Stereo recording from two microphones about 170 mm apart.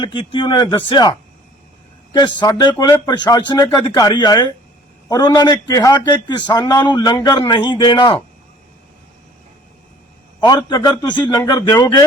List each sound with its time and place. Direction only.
0.0 s a man's voice: 30° left (ahead or behind)
2.1 s a man's voice: 25° left (ahead or behind)
10.4 s a man's voice: 25° left (ahead or behind)